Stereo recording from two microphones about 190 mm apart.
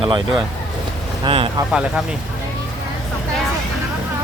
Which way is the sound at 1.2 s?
25° right (ahead or behind).